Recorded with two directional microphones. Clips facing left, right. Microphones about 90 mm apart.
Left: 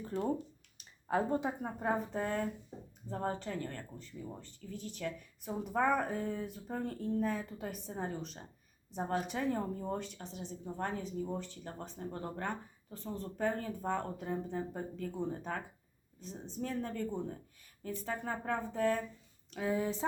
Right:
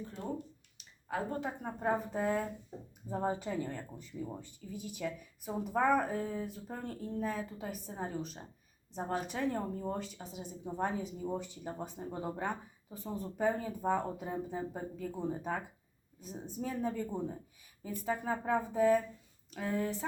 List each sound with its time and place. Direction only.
1.0 s speech: 25° left (ahead or behind)
1.6 s speech: centre (ahead or behind)
19.5 s speech: centre (ahead or behind)